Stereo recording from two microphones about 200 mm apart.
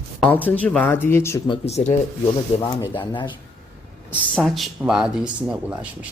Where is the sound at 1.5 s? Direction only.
30° left (ahead or behind).